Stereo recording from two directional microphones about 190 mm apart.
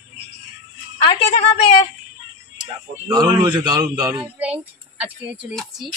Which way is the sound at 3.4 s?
10° right (ahead or behind).